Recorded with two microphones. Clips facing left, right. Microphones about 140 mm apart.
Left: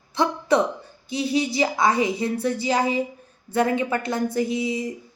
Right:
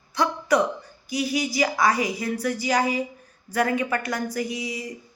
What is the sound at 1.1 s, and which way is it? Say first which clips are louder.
A woman's voice: left 2 dB; 25° left (ahead or behind).